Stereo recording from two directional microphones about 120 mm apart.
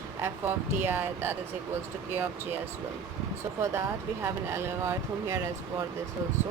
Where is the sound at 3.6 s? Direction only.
20° right (ahead or behind).